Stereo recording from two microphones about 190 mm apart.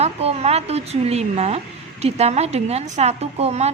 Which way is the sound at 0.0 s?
35° right (ahead or behind).